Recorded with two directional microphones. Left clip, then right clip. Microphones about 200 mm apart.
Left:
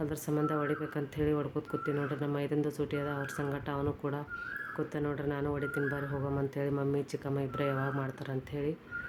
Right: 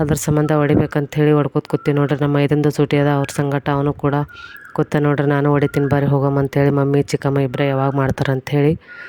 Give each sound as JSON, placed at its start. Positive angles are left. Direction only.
{"t": 0.0, "sound": "speech", "side_deg": -50}